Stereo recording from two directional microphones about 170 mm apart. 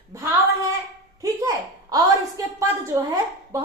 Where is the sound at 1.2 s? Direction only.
20° right (ahead or behind).